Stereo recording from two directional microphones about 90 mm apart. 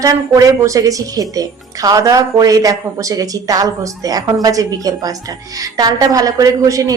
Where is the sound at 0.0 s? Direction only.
40° right (ahead or behind).